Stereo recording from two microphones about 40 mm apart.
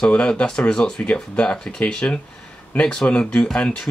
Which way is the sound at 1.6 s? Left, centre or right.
Centre.